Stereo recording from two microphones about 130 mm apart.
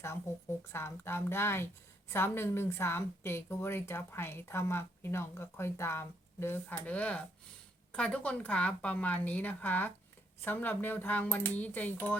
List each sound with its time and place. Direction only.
0.7 s a woman's voice: 20° left (ahead or behind)